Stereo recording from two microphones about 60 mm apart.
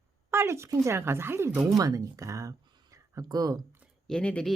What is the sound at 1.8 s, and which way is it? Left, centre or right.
Speech, right.